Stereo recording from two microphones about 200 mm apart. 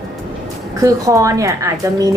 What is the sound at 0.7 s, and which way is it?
Speech, 15° right (ahead or behind).